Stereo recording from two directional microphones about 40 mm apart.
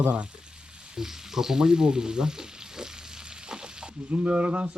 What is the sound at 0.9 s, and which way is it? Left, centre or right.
Frying, centre.